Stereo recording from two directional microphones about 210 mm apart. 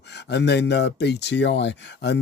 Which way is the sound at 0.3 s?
55° left (ahead or behind).